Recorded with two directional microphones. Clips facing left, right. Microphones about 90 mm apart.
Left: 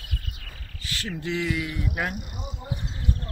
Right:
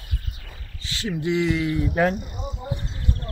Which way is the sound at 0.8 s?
20° right (ahead or behind).